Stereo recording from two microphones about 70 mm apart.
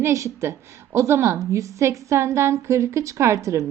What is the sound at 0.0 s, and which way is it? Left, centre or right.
A woman's voice, right.